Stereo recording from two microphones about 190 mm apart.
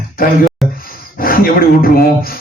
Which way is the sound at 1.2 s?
50° left (ahead or behind).